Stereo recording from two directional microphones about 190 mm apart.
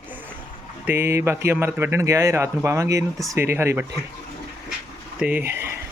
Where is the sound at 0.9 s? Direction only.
15° right (ahead or behind).